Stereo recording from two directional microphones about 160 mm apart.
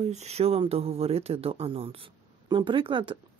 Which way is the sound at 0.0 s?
45° right (ahead or behind).